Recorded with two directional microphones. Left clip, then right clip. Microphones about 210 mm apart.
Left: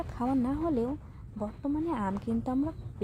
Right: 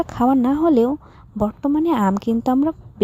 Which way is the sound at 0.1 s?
45° right (ahead or behind).